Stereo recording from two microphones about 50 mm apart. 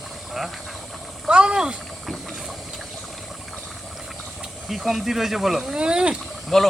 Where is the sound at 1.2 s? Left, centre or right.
Centre.